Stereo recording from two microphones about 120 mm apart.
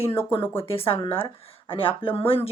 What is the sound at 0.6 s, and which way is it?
Speech, 50° left (ahead or behind).